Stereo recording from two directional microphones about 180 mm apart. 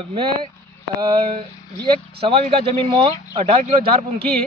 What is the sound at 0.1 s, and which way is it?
Speech, 30° right (ahead or behind).